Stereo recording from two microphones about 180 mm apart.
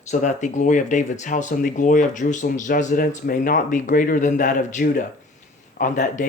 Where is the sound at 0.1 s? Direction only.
45° left (ahead or behind).